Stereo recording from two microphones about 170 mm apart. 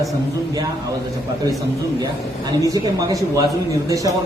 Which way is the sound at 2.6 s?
20° right (ahead or behind).